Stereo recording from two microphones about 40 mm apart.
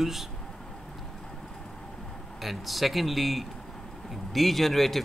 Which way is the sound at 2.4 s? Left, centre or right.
Centre.